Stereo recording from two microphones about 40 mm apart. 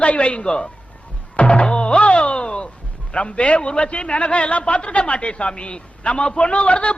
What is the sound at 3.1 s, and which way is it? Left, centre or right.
A man's voice, left.